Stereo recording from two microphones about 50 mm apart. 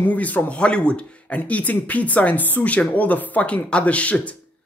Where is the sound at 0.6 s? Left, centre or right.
Centre.